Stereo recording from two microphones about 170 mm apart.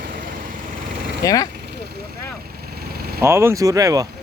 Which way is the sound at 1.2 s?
20° left (ahead or behind).